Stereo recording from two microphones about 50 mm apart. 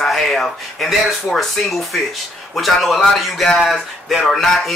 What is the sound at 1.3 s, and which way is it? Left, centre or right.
Speech, centre.